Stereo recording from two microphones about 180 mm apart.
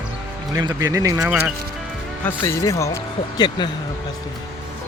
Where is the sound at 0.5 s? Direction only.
20° right (ahead or behind).